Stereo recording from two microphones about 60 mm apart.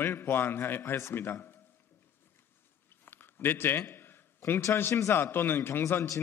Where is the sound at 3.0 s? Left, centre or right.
Left.